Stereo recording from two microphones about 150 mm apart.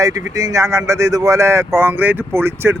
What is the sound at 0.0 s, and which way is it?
Speech, 20° right (ahead or behind).